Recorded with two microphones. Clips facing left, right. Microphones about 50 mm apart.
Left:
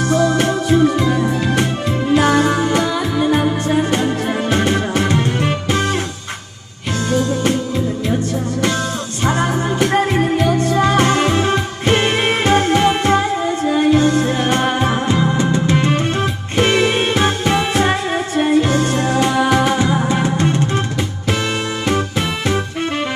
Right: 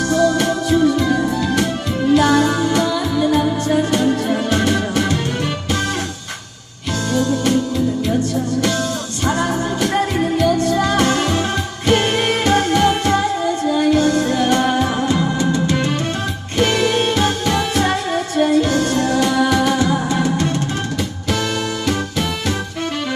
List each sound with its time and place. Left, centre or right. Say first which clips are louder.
0.1 s music: even; left
7.1 s music: even; left
9.2 s music: left 1 dB; left